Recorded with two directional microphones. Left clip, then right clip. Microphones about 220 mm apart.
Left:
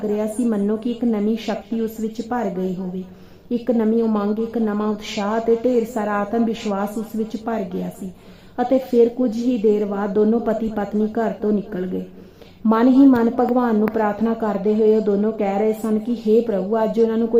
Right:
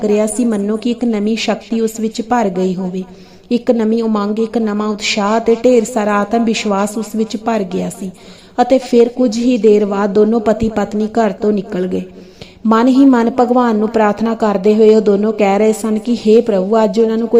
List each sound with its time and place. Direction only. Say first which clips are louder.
0.0 s a woman's voice: right 8 dB; 25° right (ahead or behind)